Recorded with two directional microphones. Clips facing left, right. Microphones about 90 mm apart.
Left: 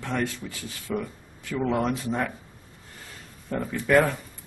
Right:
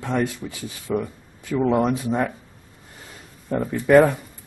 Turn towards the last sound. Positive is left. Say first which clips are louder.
# right 6 dB
turn(degrees=-15)  # may be behind; listen again after turning